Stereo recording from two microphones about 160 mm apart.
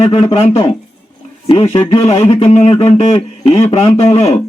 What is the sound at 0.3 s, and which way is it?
Speech, 40° left (ahead or behind).